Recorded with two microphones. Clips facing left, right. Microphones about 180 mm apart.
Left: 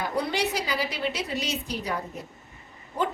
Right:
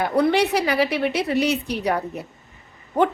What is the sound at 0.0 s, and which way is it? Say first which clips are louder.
A woman's voice: right 8 dB; 65° right (ahead or behind).